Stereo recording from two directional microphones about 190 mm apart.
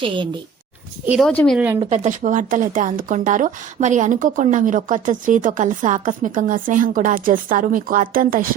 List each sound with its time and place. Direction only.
1.0 s speech: 5° right (ahead or behind)
1.3 s speech: 5° left (ahead or behind)
1.5 s speech: 10° right (ahead or behind)
1.8 s speech: 35° right (ahead or behind)